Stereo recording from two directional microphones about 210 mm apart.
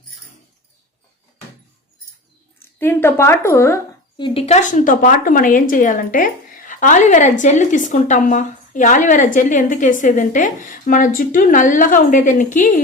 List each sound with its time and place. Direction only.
2.6 s a woman's voice: 10° left (ahead or behind)
4.2 s a woman's voice: 30° left (ahead or behind)